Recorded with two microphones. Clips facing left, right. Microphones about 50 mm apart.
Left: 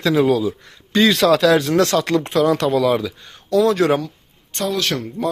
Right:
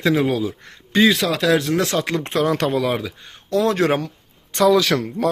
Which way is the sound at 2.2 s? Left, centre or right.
Right.